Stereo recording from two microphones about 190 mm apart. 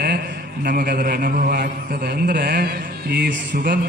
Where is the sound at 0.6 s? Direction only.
50° right (ahead or behind).